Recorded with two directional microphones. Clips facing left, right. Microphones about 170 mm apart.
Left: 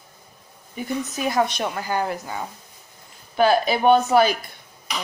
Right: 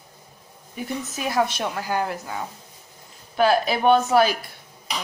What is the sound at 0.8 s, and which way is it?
A woman's voice, centre (ahead or behind).